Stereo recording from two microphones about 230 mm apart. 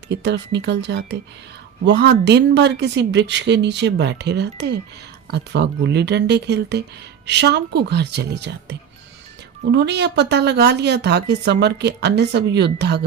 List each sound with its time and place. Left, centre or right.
0.1 s a woman's voice: right
9.7 s a woman's voice: right